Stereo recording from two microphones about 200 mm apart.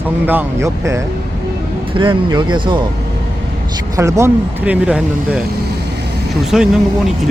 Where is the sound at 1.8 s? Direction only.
25° right (ahead or behind); by 5.4 s 5° right (ahead or behind).